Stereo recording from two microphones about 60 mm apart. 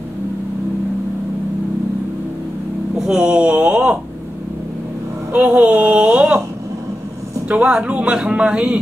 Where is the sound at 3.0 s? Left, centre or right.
Centre.